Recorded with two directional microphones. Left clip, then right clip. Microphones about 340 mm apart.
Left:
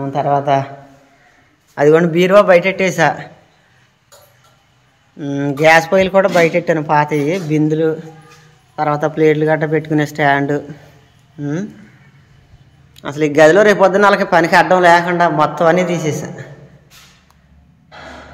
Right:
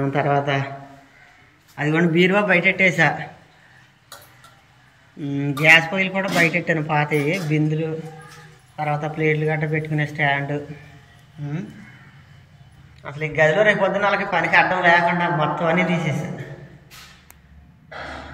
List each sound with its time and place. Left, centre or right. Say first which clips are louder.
0.0 s a man's voice: left 5 dB; centre
1.8 s a man's voice: left 8 dB; centre
5.2 s speech: left 6 dB; left
5.9 s a man's voice: left 9 dB; centre
8.8 s speech: left 8 dB; left
9.1 s a man's voice: left 9 dB; centre
13.2 s a man's voice: left 8 dB; centre